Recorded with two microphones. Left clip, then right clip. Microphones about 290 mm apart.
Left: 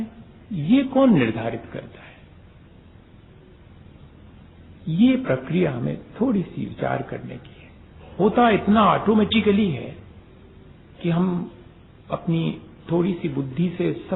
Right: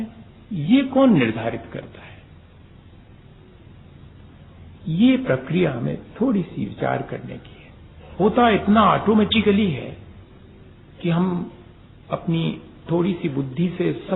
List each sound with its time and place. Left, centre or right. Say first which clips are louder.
0.7 s speech: right 1 dB; left
5.0 s speech: right 2 dB; left
8.2 s speech: right 1 dB; left
11.0 s speech: right 1 dB; left